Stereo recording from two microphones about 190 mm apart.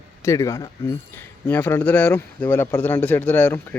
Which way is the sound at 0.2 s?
15° left (ahead or behind).